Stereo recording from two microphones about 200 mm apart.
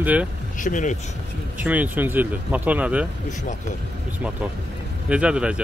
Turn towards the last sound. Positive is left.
turn(degrees=-5)  # may be behind; listen again after turning